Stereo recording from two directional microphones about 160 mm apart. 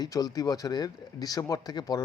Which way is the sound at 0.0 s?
25° left (ahead or behind).